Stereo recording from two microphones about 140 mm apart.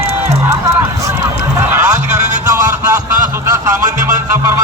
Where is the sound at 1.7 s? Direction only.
20° right (ahead or behind).